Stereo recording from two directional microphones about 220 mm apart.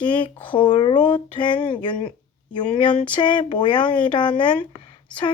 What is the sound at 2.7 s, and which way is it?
Speech, 20° left (ahead or behind).